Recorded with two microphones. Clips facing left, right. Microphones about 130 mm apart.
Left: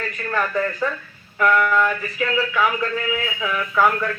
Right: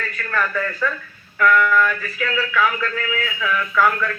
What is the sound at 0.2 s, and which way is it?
A man's voice, 25° left (ahead or behind).